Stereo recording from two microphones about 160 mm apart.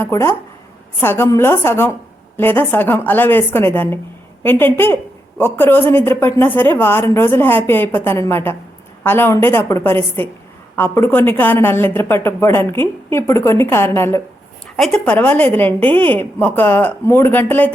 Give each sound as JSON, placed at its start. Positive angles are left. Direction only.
{"t": 0.0, "sound": "speech", "side_deg": 15}